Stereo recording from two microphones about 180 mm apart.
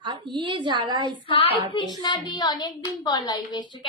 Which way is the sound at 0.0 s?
25° right (ahead or behind).